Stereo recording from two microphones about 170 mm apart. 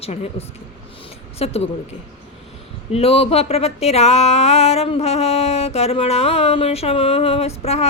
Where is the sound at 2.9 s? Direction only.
35° left (ahead or behind).